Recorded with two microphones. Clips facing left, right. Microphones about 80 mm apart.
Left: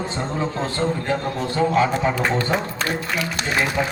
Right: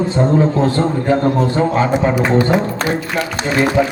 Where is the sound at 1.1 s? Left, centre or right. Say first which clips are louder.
Right 9 dB; right.